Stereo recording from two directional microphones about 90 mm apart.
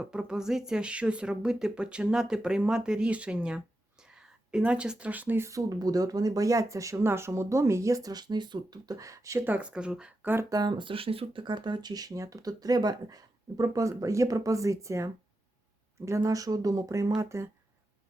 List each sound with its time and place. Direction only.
0.0 s speech: 10° right (ahead or behind)
5.4 s speech: 35° right (ahead or behind)
9.4 s speech: 15° right (ahead or behind)
10.5 s speech: 50° right (ahead or behind); by 17.5 s 35° right (ahead or behind)